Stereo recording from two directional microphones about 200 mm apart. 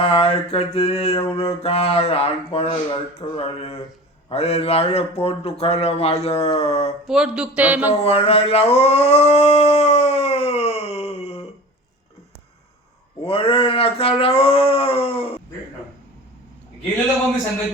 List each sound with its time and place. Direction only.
0.0 s mantra: 30° left (ahead or behind)
7.1 s speech: 5° right (ahead or behind)
8.0 s dog: 30° left (ahead or behind)
13.2 s speech: 30° left (ahead or behind)